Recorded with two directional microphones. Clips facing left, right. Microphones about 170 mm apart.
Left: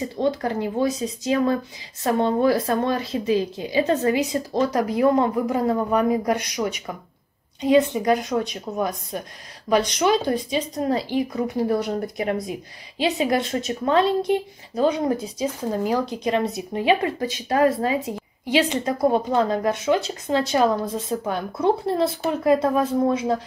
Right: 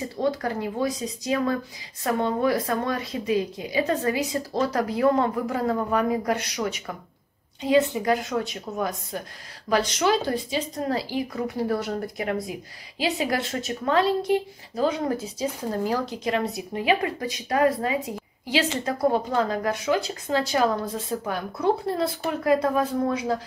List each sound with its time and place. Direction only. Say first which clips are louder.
0.2 s speech: left 2 dB; 25° left (ahead or behind)
18.5 s speech: left 4 dB; 20° left (ahead or behind)